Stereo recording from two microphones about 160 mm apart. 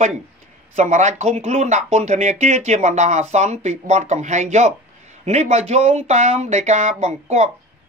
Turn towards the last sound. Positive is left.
turn(degrees=-45)  # may be behind; listen again after turning